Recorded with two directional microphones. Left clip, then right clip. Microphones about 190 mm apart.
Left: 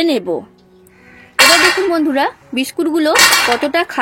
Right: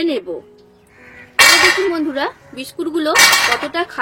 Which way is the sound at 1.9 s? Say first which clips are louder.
Left 5 dB; 35° left (ahead or behind).